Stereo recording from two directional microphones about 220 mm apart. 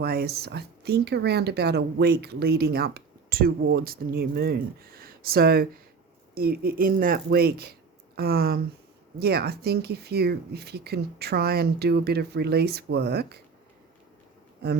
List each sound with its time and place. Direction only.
0.0 s speech: 45° right (ahead or behind)